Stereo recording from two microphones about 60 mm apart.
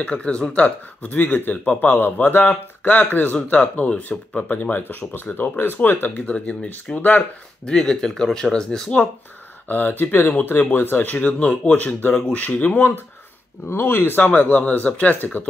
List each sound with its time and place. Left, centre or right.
0.0 s speech: centre; by 6.2 s left
6.2 s speech: left
7.6 s speech: centre
9.7 s speech: left